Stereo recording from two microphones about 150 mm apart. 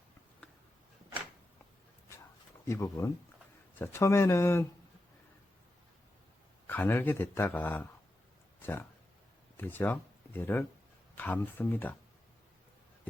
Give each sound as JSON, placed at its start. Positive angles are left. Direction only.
{"t": 2.6, "sound": "speech", "side_deg": 20}
{"t": 6.7, "sound": "speech", "side_deg": 15}